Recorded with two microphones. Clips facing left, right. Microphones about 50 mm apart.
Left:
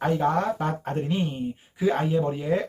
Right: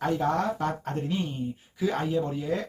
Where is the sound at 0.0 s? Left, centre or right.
Left.